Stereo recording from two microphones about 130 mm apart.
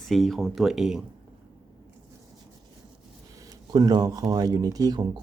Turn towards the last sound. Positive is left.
turn(degrees=-30)  # may be behind; listen again after turning